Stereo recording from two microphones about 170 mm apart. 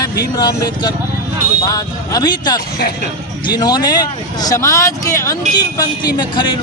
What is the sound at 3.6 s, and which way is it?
Speech, 25° left (ahead or behind).